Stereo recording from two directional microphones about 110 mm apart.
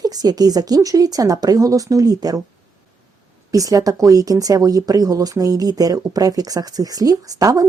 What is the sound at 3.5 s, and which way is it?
A woman's voice, 30° right (ahead or behind).